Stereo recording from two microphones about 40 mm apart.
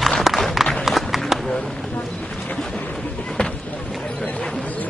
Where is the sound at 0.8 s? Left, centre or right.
Centre.